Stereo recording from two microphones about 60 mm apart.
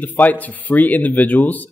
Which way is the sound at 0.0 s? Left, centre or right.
Left.